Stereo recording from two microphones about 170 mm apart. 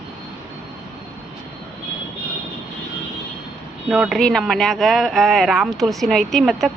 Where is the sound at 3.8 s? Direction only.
5° right (ahead or behind).